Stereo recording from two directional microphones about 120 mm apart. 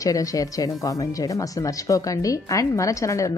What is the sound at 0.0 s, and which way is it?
Speech, 30° left (ahead or behind).